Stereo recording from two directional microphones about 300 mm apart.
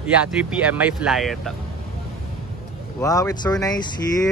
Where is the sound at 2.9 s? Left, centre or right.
Centre.